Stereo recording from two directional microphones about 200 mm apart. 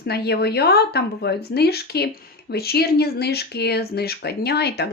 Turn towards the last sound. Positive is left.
turn(degrees=55)  # may be behind; listen again after turning